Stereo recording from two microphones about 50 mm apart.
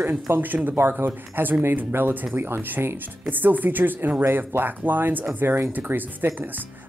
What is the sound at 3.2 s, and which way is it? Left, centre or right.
Speech, right.